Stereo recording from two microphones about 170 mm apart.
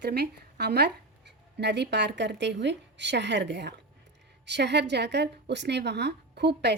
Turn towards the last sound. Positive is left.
turn(degrees=-80)